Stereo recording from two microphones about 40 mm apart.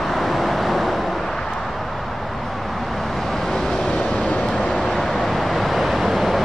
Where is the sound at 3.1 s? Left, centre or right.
Centre.